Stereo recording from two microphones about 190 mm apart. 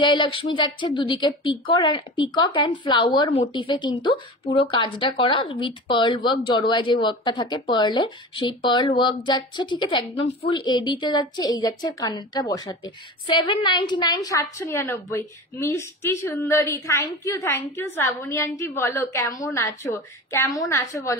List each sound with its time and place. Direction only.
0.0 s speech: 25° left (ahead or behind)